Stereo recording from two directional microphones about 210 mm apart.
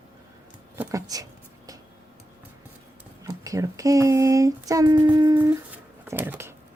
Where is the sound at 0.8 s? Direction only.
15° right (ahead or behind).